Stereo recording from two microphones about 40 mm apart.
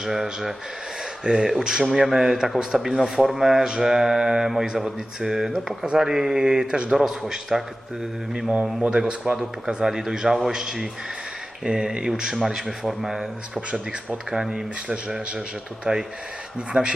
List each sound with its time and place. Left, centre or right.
0.0 s speech: centre; by 9.4 s right
9.6 s speech: centre
13.7 s speech: right